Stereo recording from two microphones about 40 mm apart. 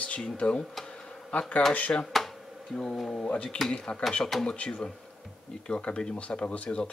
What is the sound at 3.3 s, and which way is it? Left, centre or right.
Speech, left.